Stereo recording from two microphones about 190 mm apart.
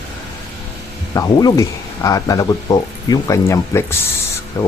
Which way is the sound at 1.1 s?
20° left (ahead or behind).